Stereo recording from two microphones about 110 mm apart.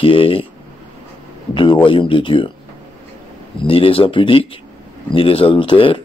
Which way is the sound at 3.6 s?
55° left (ahead or behind).